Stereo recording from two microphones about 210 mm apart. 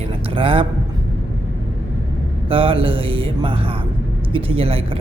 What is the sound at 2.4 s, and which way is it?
Speech, 25° right (ahead or behind).